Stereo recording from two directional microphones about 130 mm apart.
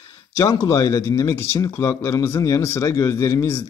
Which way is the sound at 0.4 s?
25° left (ahead or behind).